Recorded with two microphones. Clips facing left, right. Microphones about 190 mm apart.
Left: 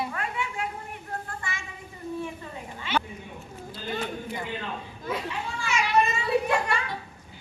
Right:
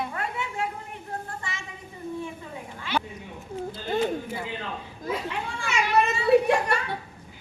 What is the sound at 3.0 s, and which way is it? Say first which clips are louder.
Cat: even; 15° right (ahead or behind).